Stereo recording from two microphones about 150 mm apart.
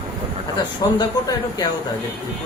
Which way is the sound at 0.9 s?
25° left (ahead or behind).